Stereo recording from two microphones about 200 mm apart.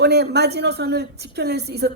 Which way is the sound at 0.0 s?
55° right (ahead or behind).